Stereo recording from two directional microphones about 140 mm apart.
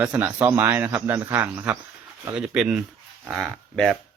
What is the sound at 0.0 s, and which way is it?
A man's voice, 10° right (ahead or behind).